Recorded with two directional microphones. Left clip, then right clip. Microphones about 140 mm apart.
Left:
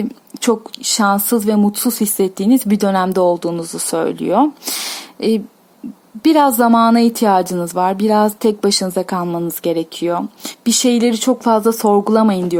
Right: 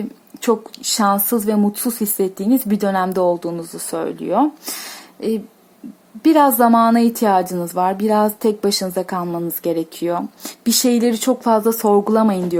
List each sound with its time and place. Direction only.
0.4 s a woman's voice: 20° left (ahead or behind)